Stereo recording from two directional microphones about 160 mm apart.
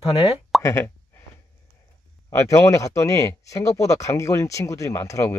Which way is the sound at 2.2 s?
20° left (ahead or behind).